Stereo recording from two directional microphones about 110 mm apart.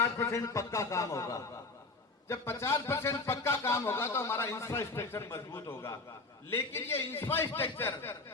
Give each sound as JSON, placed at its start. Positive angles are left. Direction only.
{"t": 0.0, "sound": "a man's voice", "side_deg": 25}